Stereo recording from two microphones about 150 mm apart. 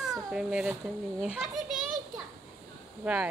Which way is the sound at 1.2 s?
5° right (ahead or behind).